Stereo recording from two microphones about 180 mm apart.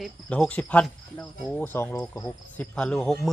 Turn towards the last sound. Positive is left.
turn(degrees=5)  # may be behind; listen again after turning